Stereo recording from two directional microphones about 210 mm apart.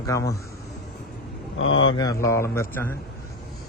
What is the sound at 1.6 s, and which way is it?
Speech, 65° left (ahead or behind).